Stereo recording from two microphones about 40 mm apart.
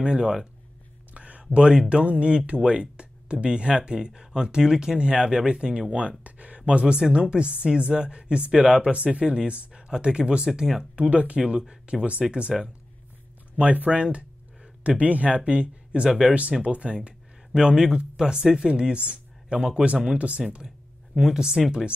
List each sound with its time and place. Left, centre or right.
0.0 s speech: right
8.9 s speech: right
11.0 s speech: right
11.4 s speech: right
13.6 s speech: right; by 16.3 s centre
16.6 s speech: right
21.2 s speech: centre